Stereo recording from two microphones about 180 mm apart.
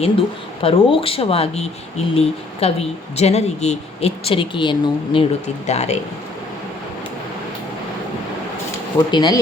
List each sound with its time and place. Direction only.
0.0 s speech: 30° left (ahead or behind)
5.6 s speech: 40° left (ahead or behind)
9.0 s speech: 25° left (ahead or behind)